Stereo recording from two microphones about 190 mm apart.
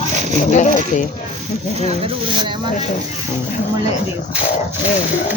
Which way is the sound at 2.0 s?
25° right (ahead or behind).